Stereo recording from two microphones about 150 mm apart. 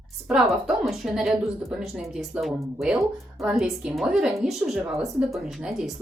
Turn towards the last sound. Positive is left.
turn(degrees=-5)  # may be behind; listen again after turning